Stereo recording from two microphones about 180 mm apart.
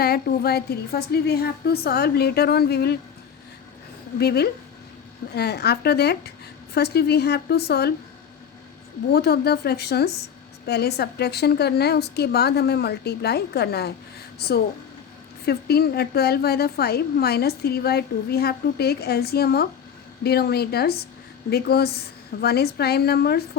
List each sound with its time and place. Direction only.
0.0 s a woman's voice: 60° left (ahead or behind)
4.2 s a woman's voice: 60° left (ahead or behind)
9.1 s a woman's voice: 60° left (ahead or behind)